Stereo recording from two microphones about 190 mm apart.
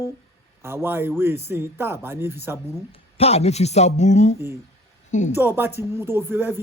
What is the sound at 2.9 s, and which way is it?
Speech, 30° left (ahead or behind).